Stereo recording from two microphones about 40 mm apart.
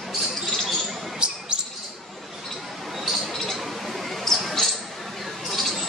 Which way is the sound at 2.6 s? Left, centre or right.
Centre.